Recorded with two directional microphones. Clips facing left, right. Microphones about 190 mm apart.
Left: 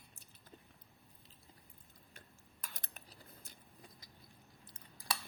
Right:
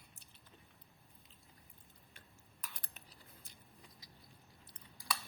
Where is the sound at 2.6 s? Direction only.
50° left (ahead or behind).